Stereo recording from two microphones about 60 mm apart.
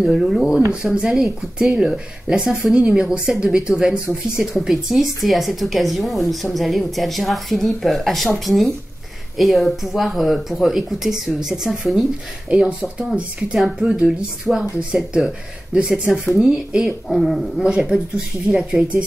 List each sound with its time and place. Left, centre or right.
0.0 s speech: centre
12.4 s speech: centre
15.9 s speech: centre